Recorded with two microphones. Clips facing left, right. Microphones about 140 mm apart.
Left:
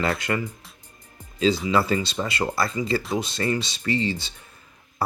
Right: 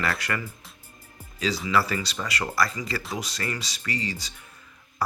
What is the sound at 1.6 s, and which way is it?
Speech, 25° left (ahead or behind).